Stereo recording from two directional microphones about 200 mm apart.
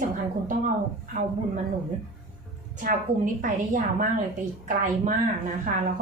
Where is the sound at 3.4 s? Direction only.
40° right (ahead or behind).